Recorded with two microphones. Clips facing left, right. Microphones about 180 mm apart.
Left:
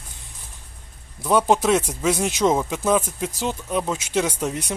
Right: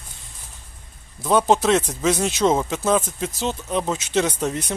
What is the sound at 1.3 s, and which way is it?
Speech, 10° left (ahead or behind).